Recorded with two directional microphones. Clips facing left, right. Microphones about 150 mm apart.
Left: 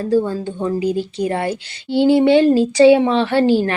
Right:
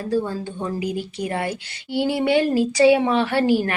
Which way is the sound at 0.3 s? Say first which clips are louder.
Left 6 dB; 30° left (ahead or behind).